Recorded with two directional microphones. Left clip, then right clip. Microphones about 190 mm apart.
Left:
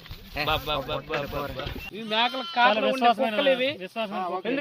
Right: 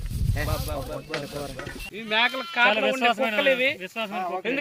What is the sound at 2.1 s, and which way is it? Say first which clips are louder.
Speech: right 2 dB; 55° right (ahead or behind).